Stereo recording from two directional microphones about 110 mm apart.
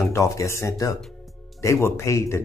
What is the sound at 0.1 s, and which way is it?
Speech, 30° left (ahead or behind).